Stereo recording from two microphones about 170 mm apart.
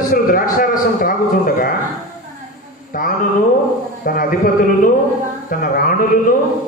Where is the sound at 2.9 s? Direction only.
55° left (ahead or behind).